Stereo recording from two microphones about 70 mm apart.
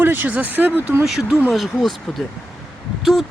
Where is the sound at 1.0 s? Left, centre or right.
Centre.